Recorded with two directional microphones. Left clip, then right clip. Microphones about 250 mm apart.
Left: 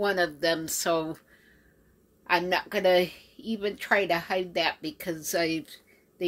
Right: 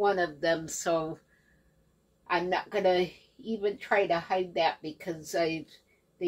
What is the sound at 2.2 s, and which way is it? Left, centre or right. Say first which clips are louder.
A woman's voice: left 3 dB; left.